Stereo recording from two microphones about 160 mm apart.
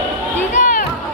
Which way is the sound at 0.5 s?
55° left (ahead or behind).